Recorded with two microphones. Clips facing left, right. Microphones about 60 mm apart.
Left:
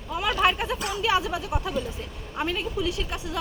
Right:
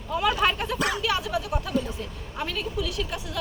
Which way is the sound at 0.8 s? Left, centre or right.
Right.